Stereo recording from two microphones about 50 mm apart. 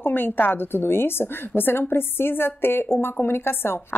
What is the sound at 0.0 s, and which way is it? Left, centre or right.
A woman's voice, left.